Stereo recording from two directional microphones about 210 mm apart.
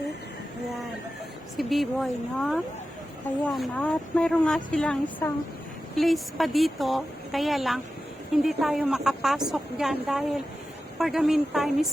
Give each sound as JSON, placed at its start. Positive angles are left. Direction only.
{"t": 1.5, "sound": "speech", "side_deg": 0}